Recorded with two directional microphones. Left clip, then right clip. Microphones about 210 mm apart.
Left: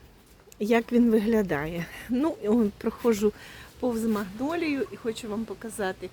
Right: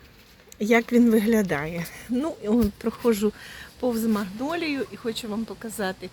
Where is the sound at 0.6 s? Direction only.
5° left (ahead or behind).